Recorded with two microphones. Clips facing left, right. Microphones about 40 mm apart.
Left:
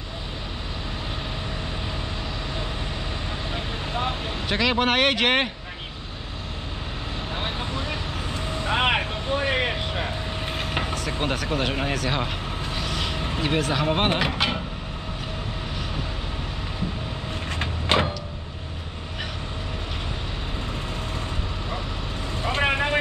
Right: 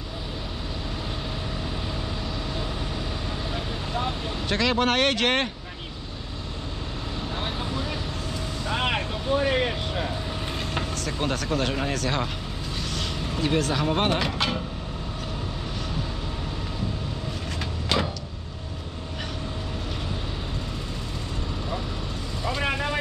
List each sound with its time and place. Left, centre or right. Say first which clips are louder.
3.5 s vehicle: left 2 dB; left
4.5 s speech: left 1 dB; centre
7.3 s vehicle: left 1 dB; left
10.6 s speech: left 4 dB; left
12.7 s train: left 2 dB; centre
13.2 s vehicle: right 2 dB; left
13.6 s speech: left 2 dB; centre
17.6 s a sound: left 4 dB; left
22.4 s vehicle: left 4 dB; left